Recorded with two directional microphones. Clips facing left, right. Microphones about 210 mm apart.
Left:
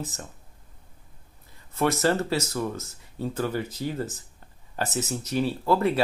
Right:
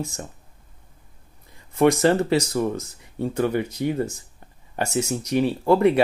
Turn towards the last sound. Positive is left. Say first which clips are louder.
# right 6 dB
turn(degrees=-15)  # may be behind; listen again after turning